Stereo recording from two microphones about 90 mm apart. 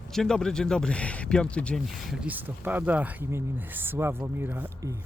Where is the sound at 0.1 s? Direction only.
5° left (ahead or behind).